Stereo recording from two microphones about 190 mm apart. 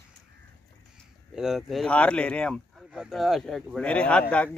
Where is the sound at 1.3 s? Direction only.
5° right (ahead or behind).